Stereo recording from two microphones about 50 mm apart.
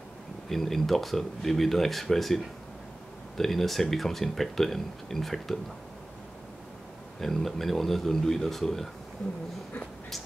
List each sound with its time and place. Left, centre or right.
0.5 s speech: centre
7.2 s speech: centre